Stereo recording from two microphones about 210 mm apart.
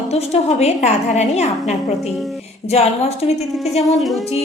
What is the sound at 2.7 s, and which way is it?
Speech, 30° left (ahead or behind).